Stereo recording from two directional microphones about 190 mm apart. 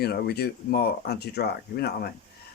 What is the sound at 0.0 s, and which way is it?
Speech, 55° left (ahead or behind).